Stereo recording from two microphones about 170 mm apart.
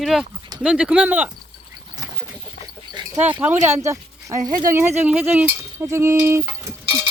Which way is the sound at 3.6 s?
15° right (ahead or behind).